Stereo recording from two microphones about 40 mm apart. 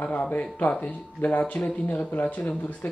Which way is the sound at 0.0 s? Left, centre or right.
Left.